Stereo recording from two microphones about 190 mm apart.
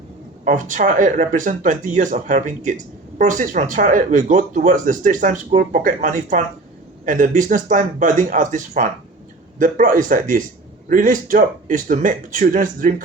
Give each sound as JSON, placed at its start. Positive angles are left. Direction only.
{"t": 0.4, "sound": "speech", "side_deg": -45}